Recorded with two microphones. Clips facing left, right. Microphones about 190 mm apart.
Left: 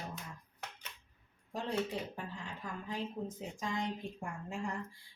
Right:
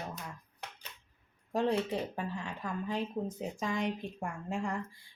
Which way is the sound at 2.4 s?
70° right (ahead or behind).